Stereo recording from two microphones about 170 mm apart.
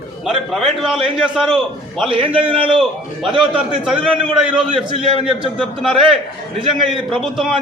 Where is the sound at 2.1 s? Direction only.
30° right (ahead or behind).